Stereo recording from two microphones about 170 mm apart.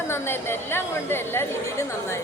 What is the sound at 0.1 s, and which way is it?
Speech, 15° left (ahead or behind).